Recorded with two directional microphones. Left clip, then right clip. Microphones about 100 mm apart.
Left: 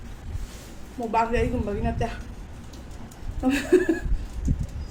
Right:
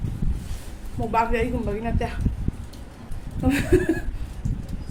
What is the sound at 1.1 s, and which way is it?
Speech, 15° right (ahead or behind).